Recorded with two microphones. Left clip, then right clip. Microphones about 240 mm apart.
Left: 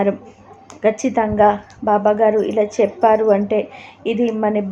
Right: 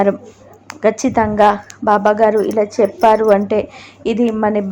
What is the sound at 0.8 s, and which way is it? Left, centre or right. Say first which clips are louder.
A woman's voice: right 2 dB; centre.